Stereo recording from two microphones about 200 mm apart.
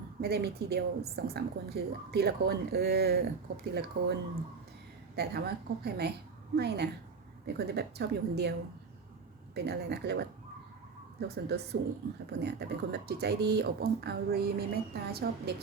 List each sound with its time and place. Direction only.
0.2 s speech: 50° right (ahead or behind)
5.1 s speech: 55° right (ahead or behind)
9.6 s speech: 55° right (ahead or behind)